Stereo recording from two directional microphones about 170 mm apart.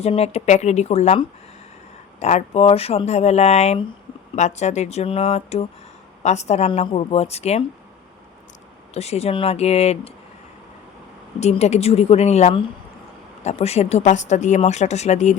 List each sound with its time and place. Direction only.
0.0 s speech: 40° left (ahead or behind)
2.2 s speech: 40° left (ahead or behind)
8.9 s speech: 40° left (ahead or behind)
11.3 s speech: 40° left (ahead or behind)